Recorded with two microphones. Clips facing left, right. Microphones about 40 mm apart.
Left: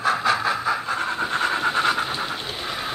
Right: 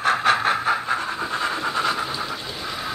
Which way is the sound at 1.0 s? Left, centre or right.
Left.